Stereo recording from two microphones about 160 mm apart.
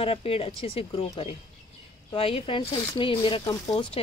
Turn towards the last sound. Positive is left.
turn(degrees=30)  # may be behind; listen again after turning